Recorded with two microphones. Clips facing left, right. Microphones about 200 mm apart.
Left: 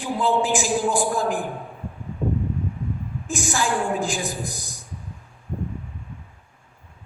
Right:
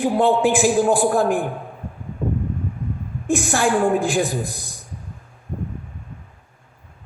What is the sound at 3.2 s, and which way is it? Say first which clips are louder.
A man's voice: right 6 dB; 60° right (ahead or behind).